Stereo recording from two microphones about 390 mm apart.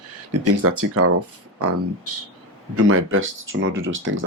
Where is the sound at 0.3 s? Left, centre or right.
Right.